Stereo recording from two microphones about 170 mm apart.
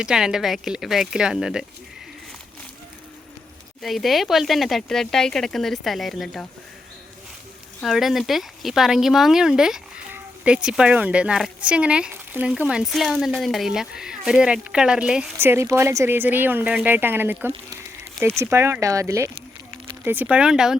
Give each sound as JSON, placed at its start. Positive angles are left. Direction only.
{"t": 0.0, "sound": "speech", "side_deg": -5}
{"t": 3.8, "sound": "speech", "side_deg": 0}
{"t": 7.8, "sound": "speech", "side_deg": 0}